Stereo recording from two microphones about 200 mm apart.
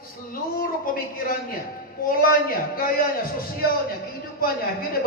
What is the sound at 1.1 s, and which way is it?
Speech, 45° left (ahead or behind).